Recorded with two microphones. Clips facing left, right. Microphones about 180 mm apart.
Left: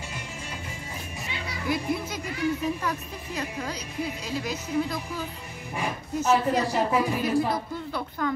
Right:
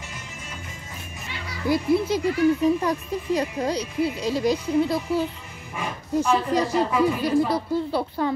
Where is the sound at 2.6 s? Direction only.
35° right (ahead or behind).